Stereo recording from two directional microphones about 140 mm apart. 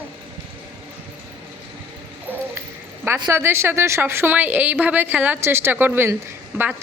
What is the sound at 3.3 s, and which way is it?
A woman's voice, 20° right (ahead or behind).